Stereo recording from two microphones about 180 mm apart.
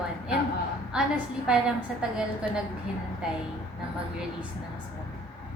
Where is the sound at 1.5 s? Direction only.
5° right (ahead or behind).